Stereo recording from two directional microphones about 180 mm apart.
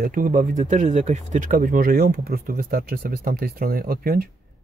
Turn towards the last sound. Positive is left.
turn(degrees=-55)  # may be behind; listen again after turning